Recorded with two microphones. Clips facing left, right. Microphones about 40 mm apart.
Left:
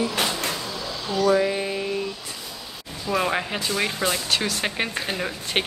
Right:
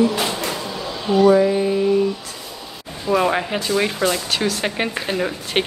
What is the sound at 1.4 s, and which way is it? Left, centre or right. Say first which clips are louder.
Music: right 7 dB; centre.